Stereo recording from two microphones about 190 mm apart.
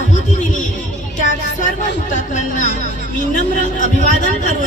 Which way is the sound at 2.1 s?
40° left (ahead or behind).